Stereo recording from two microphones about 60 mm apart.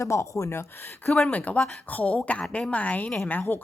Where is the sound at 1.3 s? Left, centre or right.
Left.